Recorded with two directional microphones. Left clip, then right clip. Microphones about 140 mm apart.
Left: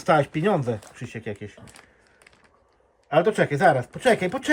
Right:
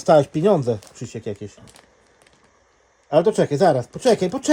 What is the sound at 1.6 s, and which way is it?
Speech, 90° right.